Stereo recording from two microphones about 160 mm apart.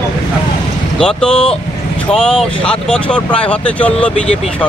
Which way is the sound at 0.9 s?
5° left (ahead or behind).